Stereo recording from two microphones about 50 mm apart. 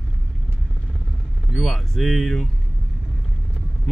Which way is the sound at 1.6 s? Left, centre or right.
Centre.